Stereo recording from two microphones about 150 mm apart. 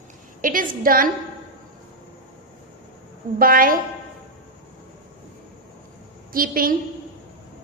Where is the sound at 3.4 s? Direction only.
70° right (ahead or behind).